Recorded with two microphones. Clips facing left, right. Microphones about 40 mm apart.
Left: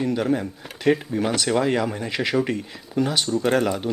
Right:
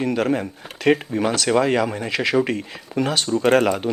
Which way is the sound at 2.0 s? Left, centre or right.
Centre.